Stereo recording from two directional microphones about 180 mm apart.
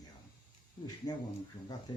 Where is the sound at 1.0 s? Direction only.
20° left (ahead or behind).